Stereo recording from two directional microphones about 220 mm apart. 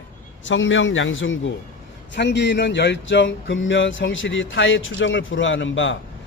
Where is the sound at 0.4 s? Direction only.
60° left (ahead or behind).